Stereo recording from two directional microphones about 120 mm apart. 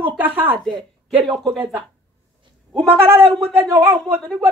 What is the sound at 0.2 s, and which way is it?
Speech, 15° right (ahead or behind).